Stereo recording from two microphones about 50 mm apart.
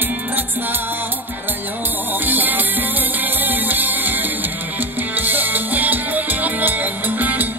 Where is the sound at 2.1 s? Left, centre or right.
Right.